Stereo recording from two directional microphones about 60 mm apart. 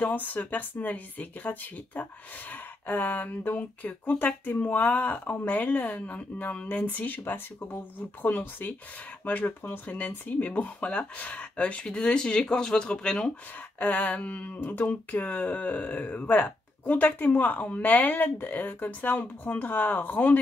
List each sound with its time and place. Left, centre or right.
0.0 s speech: left; by 13.3 s centre
13.7 s speech: left